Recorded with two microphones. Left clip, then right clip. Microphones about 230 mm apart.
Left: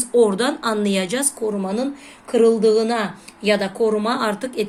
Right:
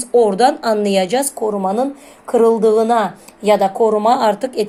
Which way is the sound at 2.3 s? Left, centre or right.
Centre.